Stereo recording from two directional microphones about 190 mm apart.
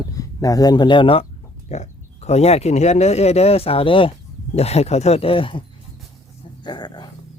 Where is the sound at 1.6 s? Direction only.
35° left (ahead or behind).